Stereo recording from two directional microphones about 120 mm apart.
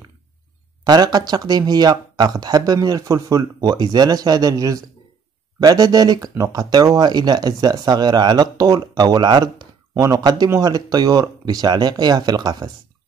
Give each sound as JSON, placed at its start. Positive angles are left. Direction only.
{"t": 0.8, "sound": "speech", "side_deg": -35}